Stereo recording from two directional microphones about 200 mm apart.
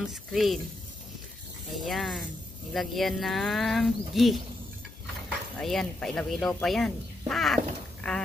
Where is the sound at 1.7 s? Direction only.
Centre (ahead or behind).